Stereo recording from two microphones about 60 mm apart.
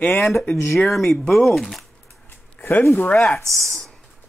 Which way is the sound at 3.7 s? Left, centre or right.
Centre.